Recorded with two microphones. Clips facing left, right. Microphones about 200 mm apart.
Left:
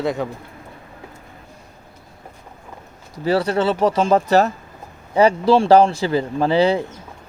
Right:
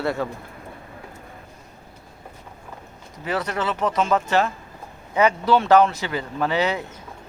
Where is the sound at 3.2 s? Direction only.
30° left (ahead or behind).